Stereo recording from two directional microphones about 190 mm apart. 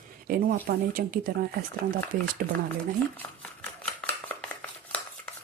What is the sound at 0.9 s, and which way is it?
Speech, 50° right (ahead or behind).